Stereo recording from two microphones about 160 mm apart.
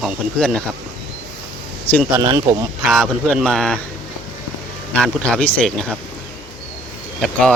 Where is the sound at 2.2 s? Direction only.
30° right (ahead or behind).